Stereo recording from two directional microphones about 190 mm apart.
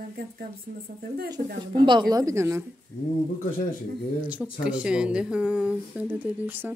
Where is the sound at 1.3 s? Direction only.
25° right (ahead or behind).